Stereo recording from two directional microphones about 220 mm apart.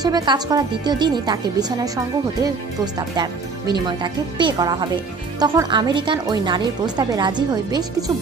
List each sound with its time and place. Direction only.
0.0 s speech: 20° right (ahead or behind)